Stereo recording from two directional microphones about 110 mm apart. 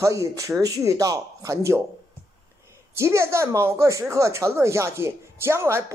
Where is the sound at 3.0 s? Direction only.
25° right (ahead or behind).